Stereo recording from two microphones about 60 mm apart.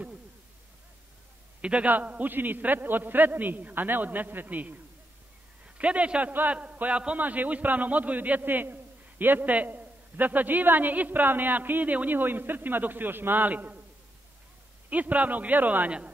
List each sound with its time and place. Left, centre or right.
1.6 s a man's voice: right
5.8 s a man's voice: right
14.9 s a man's voice: right